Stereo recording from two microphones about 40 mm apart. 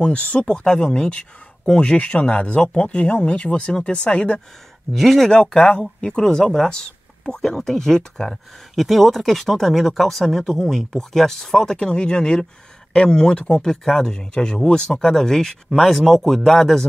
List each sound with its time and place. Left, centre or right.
0.0 s speech: left
4.9 s speech: centre
5.3 s speech: left